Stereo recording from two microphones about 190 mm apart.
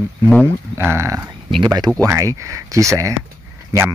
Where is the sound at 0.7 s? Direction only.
15° right (ahead or behind).